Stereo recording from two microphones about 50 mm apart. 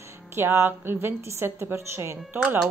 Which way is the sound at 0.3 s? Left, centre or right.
Right.